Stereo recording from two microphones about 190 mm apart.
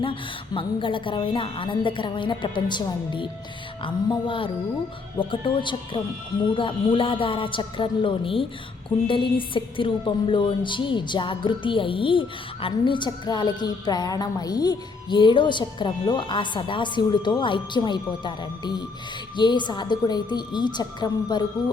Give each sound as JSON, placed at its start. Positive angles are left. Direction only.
{"t": 0.0, "sound": "a woman's voice", "side_deg": 25}